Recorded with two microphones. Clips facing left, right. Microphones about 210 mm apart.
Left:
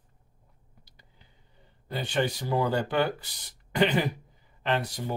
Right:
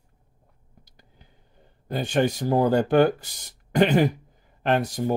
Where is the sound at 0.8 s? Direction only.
45° right (ahead or behind).